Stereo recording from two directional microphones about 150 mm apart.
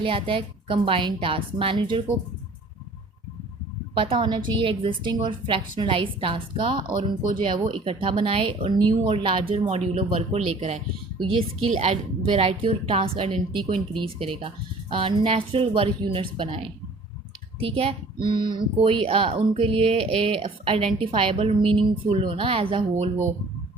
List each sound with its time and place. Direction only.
0.0 s speech: 35° right (ahead or behind)
3.9 s speech: 35° right (ahead or behind)